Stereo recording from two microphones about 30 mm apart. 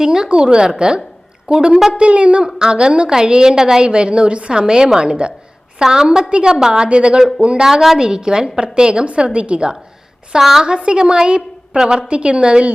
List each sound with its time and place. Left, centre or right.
0.0 s a woman's voice: centre
0.3 s a woman's voice: right
2.0 s a woman's voice: right
2.6 s a woman's voice: right
3.8 s a woman's voice: right
4.5 s a woman's voice: right
5.8 s a woman's voice: centre
6.8 s a woman's voice: right
7.6 s a woman's voice: centre
8.0 s a woman's voice: right
10.3 s a woman's voice: centre
10.6 s a woman's voice: right
12.0 s a woman's voice: right